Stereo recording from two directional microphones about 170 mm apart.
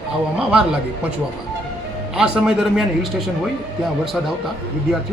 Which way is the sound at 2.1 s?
5° right (ahead or behind).